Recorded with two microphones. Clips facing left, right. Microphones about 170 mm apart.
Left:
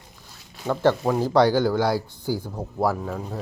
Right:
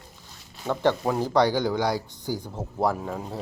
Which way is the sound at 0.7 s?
5° left (ahead or behind).